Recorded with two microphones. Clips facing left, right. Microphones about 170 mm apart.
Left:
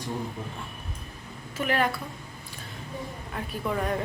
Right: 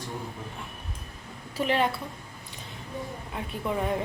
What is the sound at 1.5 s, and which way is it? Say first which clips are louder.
Speech: right 1 dB; 25° right (ahead or behind).